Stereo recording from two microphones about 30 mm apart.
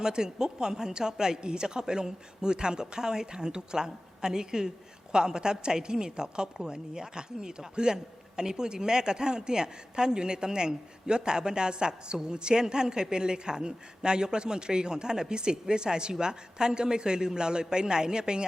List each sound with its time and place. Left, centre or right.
0.0 s a woman's voice: right